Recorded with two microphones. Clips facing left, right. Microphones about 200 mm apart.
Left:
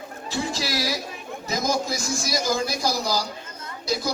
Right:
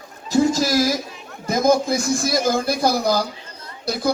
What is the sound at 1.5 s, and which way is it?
A man's voice, 55° right (ahead or behind).